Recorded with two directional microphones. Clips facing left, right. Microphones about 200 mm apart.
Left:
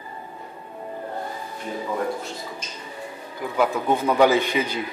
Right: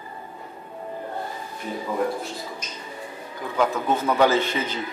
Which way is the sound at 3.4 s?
10° left (ahead or behind).